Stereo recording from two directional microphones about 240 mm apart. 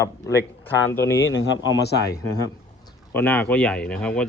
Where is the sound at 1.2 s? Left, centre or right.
Left.